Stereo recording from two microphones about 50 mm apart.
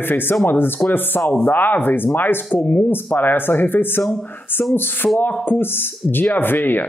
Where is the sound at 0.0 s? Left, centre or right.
Left.